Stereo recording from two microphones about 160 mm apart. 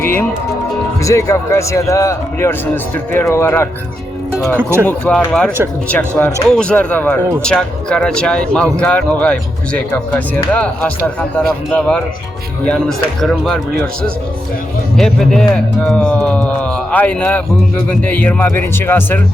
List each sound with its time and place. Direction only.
0.0 s speech: 15° left (ahead or behind)
4.5 s speech: 15° right (ahead or behind)
4.9 s speech: 5° left (ahead or behind)
14.9 s speech: 5° left (ahead or behind)